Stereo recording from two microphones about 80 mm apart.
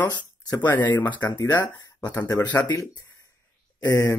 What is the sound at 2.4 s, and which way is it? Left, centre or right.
Speech, left.